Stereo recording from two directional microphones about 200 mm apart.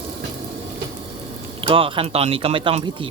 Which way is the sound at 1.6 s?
25° right (ahead or behind).